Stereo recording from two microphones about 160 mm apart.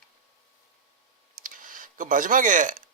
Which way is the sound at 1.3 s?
60° right (ahead or behind).